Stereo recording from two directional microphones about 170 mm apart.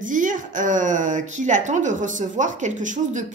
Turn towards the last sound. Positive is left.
turn(degrees=-45)  # may be behind; listen again after turning